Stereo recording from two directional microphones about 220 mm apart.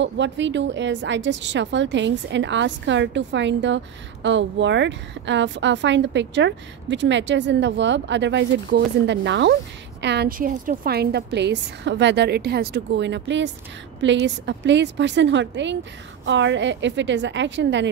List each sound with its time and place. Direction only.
0.0 s a woman's voice: 55° right (ahead or behind)